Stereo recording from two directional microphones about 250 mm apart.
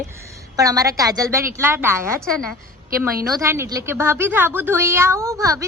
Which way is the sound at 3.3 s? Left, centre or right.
Centre.